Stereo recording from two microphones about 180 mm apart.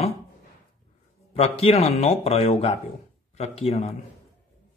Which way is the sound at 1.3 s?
35° left (ahead or behind).